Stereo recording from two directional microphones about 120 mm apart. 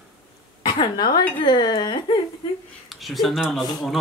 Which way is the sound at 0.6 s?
40° left (ahead or behind).